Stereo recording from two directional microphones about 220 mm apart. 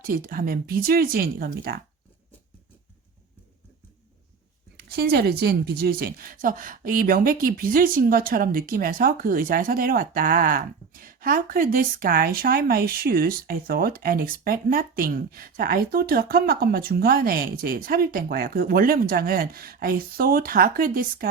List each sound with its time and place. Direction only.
0.0 s speech: 40° right (ahead or behind)
4.9 s speech: 45° right (ahead or behind)